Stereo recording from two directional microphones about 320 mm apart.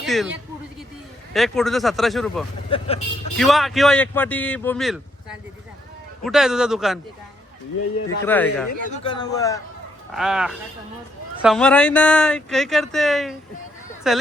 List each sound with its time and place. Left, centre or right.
0.0 s speech: centre
2.6 s a man's voice: centre
3.3 s speech: centre
6.2 s speech: centre
8.2 s a man's voice: centre
10.2 s speech: centre